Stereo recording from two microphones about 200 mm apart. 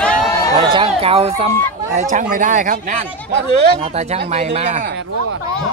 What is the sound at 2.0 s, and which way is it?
Speech, 40° right (ahead or behind).